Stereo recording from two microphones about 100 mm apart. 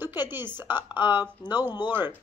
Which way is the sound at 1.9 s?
20° right (ahead or behind).